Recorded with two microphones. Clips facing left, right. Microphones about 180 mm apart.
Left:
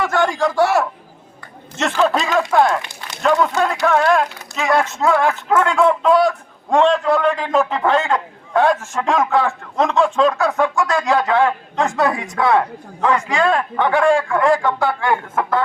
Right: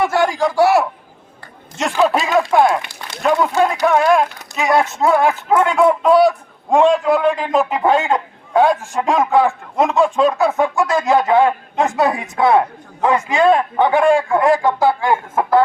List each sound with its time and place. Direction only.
0.0 s a sound: 10° right (ahead or behind)
0.3 s a man's voice: centre (ahead or behind)
1.8 s a man's voice: centre (ahead or behind); by 15.4 s 20° right (ahead or behind)